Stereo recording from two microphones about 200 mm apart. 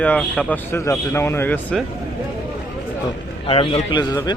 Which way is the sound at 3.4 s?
30° left (ahead or behind).